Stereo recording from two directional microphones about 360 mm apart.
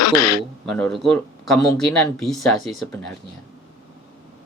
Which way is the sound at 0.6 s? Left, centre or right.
Centre.